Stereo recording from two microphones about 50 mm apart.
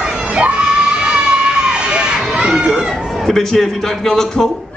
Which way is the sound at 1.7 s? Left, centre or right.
Centre.